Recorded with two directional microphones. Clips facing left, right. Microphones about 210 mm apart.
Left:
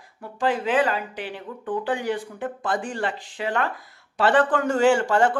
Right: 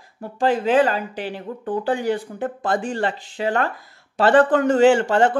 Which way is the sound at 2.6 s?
25° right (ahead or behind).